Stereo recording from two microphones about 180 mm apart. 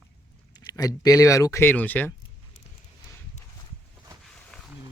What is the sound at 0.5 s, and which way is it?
Speech, 20° left (ahead or behind).